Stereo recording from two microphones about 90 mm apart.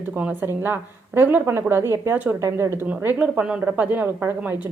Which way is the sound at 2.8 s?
20° right (ahead or behind).